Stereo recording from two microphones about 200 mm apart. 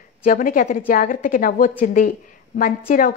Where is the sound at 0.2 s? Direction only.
40° left (ahead or behind).